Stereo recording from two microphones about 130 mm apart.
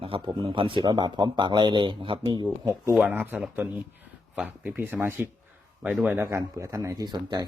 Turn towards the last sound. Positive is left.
turn(degrees=-30)  # may be behind; listen again after turning